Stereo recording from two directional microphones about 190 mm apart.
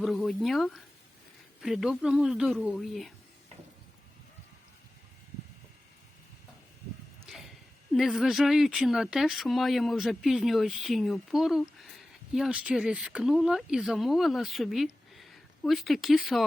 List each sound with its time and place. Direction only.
0.0 s speech: centre (ahead or behind)
7.3 s a sound: centre (ahead or behind)
7.9 s speech: centre (ahead or behind)